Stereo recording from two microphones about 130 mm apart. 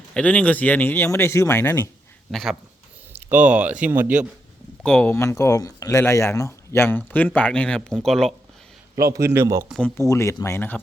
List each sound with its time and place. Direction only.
0.1 s speech: 10° left (ahead or behind)
2.3 s speech: centre (ahead or behind)
3.1 s speech: 15° right (ahead or behind)
4.9 s speech: 10° left (ahead or behind)
9.0 s a man's voice: 25° right (ahead or behind)
10.1 s speech: 25° left (ahead or behind)